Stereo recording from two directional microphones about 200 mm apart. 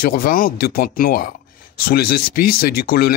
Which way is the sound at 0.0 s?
45° left (ahead or behind).